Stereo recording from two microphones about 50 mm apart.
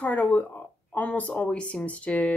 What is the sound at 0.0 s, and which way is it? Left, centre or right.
Speech, left.